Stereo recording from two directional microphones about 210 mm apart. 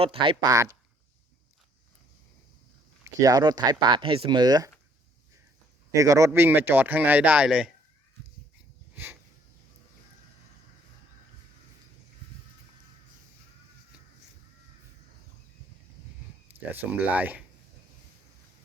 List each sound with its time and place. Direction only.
0.0 s a man's voice: 25° right (ahead or behind)
3.0 s speech: 15° right (ahead or behind)
5.9 s a man's voice: 15° right (ahead or behind)
16.5 s speech: 10° right (ahead or behind)